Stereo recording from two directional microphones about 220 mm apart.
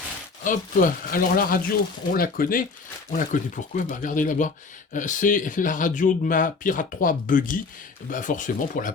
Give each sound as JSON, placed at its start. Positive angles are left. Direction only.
{"t": 0.4, "sound": "speech", "side_deg": 35}